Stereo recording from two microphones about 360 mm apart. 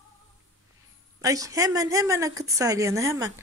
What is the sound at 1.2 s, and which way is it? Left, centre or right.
Speech, centre.